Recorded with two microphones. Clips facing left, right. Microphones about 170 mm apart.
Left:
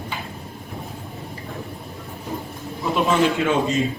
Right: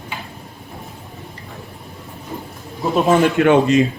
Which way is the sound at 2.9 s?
50° right (ahead or behind).